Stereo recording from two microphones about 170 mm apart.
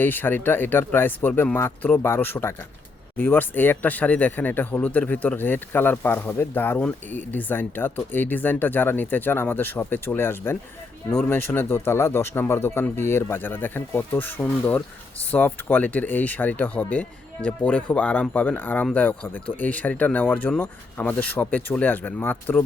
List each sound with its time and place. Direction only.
0.0 s speech: 10° left (ahead or behind)